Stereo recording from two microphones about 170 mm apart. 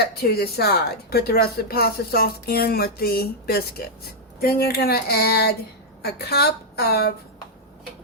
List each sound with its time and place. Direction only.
0.0 s a woman's voice: 65° left (ahead or behind)